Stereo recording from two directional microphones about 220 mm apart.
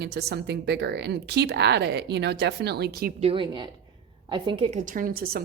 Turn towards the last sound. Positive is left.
turn(degrees=-40)  # may be behind; listen again after turning